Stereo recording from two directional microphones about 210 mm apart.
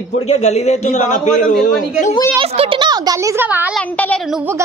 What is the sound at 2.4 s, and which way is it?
Speech, 25° right (ahead or behind).